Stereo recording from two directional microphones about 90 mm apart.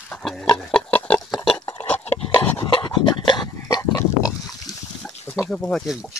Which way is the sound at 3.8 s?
35° left (ahead or behind).